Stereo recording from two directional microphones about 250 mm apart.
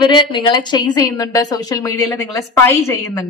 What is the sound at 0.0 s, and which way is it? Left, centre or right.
A woman's voice, centre.